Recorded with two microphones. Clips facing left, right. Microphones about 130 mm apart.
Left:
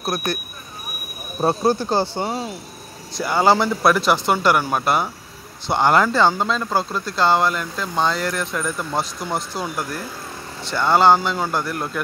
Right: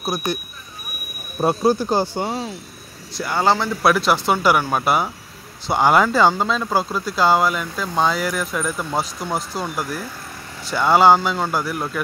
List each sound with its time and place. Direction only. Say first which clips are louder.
1.7 s speech: right 1 dB; 5° right (ahead or behind)
11.1 s speech: right 1 dB; centre (ahead or behind)